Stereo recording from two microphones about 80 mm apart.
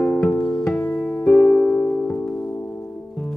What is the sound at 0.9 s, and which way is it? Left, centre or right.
Music, left.